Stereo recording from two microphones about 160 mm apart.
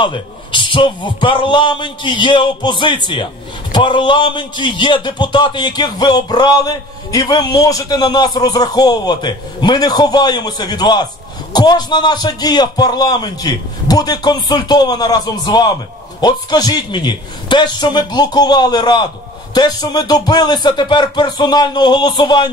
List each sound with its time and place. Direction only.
0.0 s speech: 30° left (ahead or behind)